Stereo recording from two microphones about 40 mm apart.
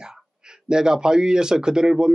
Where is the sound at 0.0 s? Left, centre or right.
Centre.